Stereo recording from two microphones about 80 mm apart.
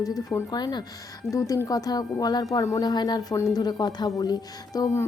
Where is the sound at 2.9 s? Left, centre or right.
Left.